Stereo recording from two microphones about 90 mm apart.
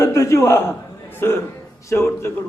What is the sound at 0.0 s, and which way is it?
A man's voice, 30° left (ahead or behind).